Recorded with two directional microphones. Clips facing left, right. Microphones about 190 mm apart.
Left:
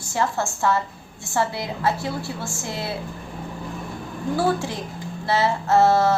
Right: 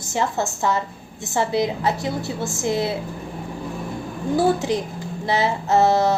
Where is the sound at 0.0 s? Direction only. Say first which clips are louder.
Right 1 dB; 20° right (ahead or behind).